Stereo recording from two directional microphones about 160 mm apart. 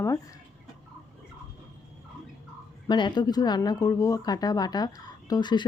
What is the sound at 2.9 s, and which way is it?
Speech, 30° left (ahead or behind).